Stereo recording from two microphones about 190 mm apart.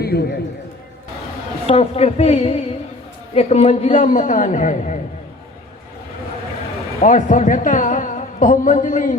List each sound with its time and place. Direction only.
0.0 s a man's voice: 55° left (ahead or behind)
1.6 s a man's voice: 35° left (ahead or behind)
4.0 s a man's voice: 45° left (ahead or behind)
7.0 s a woman's voice: 40° left (ahead or behind)